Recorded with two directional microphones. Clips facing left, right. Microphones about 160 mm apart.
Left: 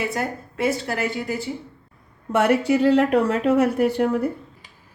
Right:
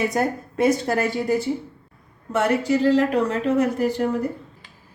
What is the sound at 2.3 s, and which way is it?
Speech, 60° left (ahead or behind).